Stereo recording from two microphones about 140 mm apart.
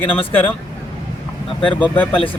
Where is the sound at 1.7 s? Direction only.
10° left (ahead or behind).